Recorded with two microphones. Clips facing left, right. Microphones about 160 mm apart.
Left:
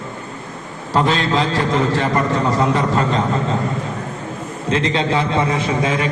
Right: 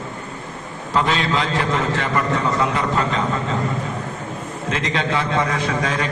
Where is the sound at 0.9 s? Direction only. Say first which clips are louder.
Left 3 dB; 35° left (ahead or behind).